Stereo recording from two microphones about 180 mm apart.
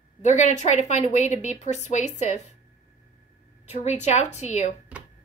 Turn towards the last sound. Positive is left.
turn(degrees=40)  # may be behind; listen again after turning